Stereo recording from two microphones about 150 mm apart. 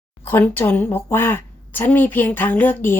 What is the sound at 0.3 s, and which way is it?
A woman's voice, 15° left (ahead or behind).